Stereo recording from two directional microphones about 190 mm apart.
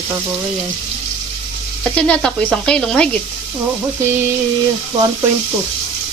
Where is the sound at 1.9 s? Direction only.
5° left (ahead or behind).